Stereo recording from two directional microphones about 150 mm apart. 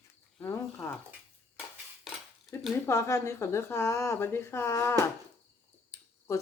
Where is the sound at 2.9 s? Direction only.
20° left (ahead or behind).